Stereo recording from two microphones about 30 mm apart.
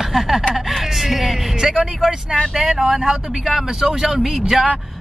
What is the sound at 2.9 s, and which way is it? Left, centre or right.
Speech, centre.